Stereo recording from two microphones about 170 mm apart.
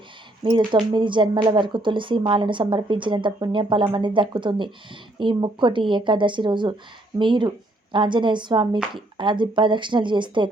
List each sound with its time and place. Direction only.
0.5 s speech: 30° right (ahead or behind)